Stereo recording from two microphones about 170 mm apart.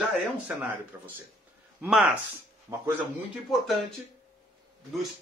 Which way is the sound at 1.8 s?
5° right (ahead or behind).